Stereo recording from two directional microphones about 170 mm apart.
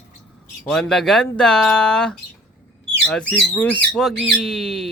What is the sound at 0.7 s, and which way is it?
Speech, 5° left (ahead or behind).